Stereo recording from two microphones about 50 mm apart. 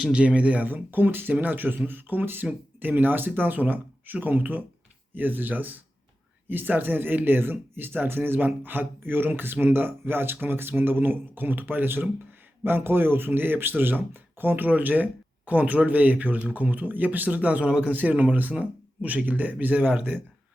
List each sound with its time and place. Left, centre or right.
0.1 s speech: right